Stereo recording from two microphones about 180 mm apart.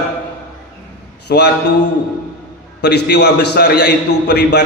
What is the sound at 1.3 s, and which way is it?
Speech, 65° left (ahead or behind).